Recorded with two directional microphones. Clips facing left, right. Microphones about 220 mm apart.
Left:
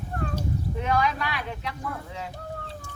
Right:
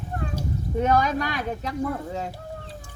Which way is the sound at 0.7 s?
45° right (ahead or behind).